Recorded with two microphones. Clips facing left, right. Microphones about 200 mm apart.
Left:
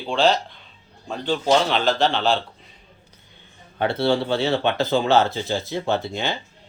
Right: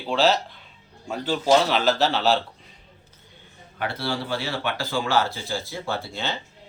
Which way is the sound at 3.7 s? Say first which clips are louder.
Left 8 dB; 25° left (ahead or behind).